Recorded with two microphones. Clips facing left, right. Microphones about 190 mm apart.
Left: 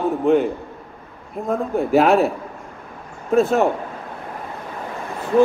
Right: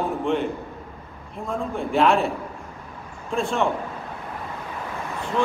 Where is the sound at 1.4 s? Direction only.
60° left (ahead or behind).